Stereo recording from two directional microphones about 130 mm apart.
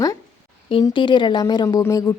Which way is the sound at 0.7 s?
40° left (ahead or behind).